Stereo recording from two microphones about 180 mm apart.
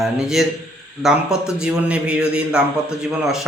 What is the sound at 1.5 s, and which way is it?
A man's voice, 5° right (ahead or behind).